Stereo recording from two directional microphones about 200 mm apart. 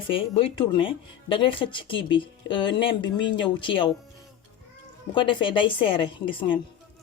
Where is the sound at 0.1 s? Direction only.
25° left (ahead or behind).